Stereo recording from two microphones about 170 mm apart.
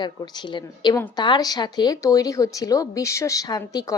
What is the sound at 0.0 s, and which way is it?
A woman's voice, 25° left (ahead or behind).